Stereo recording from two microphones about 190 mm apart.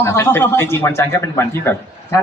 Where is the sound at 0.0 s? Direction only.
10° left (ahead or behind).